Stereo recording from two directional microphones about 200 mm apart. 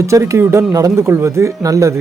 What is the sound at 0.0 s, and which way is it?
Speech, 15° right (ahead or behind).